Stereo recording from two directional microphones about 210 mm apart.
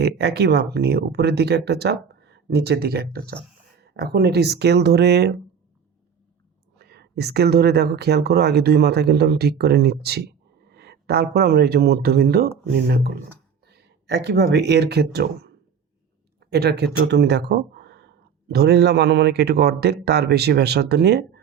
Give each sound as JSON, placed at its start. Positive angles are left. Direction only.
{"t": 0.0, "sound": "speech", "side_deg": -55}
{"t": 6.7, "sound": "speech", "side_deg": -50}